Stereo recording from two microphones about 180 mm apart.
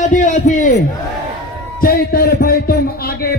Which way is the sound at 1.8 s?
55° left (ahead or behind).